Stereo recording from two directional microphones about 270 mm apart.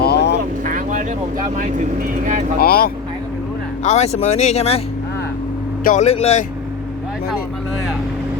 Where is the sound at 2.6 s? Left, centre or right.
Left.